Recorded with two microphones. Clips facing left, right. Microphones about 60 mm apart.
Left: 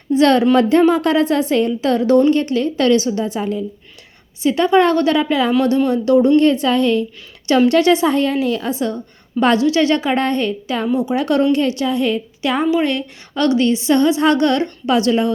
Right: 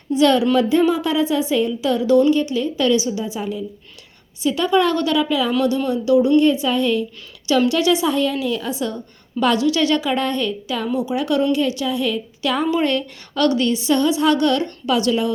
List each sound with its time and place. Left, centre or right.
0.1 s a woman's voice: left
0.5 s a woman's voice: left
2.4 s a woman's voice: left
4.4 s a woman's voice: left
7.7 s a woman's voice: left
12.4 s a woman's voice: left
12.7 s a woman's voice: centre; by 15.3 s left